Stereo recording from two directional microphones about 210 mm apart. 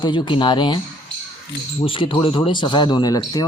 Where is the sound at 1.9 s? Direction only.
25° left (ahead or behind).